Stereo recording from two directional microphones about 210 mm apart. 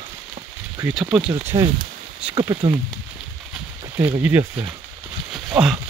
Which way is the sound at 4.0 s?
10° right (ahead or behind).